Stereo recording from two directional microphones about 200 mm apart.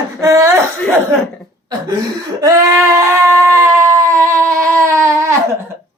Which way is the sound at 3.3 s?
15° right (ahead or behind).